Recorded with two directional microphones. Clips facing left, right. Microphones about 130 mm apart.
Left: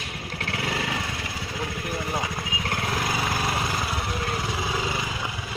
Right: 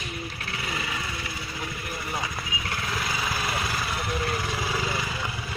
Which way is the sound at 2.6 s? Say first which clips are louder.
Left 4 dB; 45° left (ahead or behind).